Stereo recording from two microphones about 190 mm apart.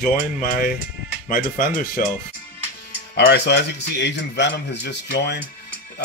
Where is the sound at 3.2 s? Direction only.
60° left (ahead or behind).